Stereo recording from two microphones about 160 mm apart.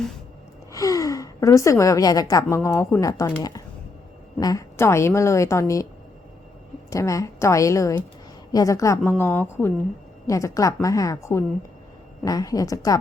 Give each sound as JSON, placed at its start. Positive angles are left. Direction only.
{"t": 0.7, "sound": "a woman's voice", "side_deg": 20}
{"t": 6.9, "sound": "a woman's voice", "side_deg": 20}